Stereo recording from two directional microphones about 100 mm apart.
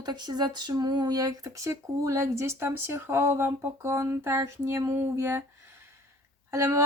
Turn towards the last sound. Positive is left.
turn(degrees=-30)  # may be behind; listen again after turning